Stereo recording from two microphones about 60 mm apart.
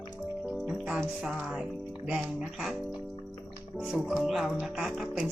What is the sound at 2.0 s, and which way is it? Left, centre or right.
Speech, centre.